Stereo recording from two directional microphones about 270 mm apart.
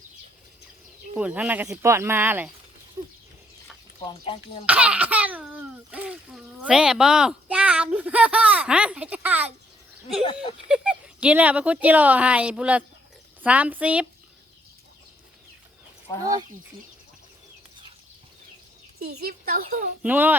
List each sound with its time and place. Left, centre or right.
1.1 s speech: centre
4.6 s speech: centre
10.7 s speech: centre
16.2 s speech: centre
19.2 s a woman's voice: right
20.0 s speech: centre